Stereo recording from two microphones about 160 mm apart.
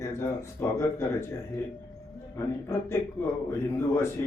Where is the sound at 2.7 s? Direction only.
15° left (ahead or behind).